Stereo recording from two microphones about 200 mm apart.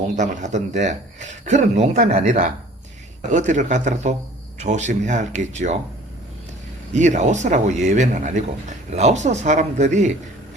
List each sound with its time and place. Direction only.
0.2 s speech: 35° right (ahead or behind)
6.9 s speech: 35° right (ahead or behind)